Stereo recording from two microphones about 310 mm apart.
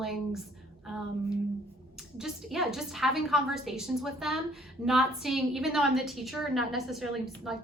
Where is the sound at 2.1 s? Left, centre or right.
Centre.